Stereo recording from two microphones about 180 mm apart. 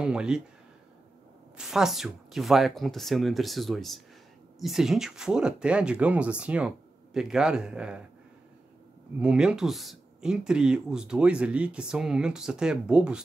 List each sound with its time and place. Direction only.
0.0 s speech: 5° right (ahead or behind)
1.6 s speech: centre (ahead or behind)
9.2 s speech: 5° right (ahead or behind)